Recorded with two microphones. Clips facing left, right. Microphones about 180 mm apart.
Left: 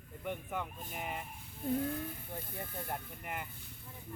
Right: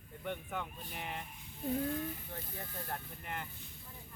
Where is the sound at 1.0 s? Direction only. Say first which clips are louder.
Left 2 dB; 5° left (ahead or behind).